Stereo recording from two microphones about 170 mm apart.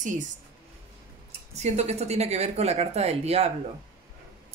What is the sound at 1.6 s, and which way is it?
A woman's voice, 40° right (ahead or behind).